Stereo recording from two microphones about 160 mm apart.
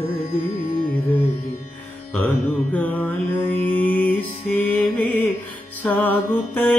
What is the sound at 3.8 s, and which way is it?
Music, 10° left (ahead or behind).